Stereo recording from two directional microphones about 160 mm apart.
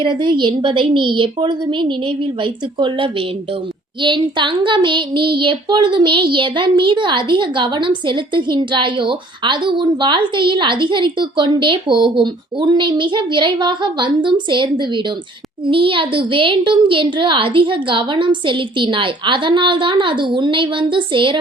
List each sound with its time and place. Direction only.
0.0 s speech: 30° right (ahead or behind)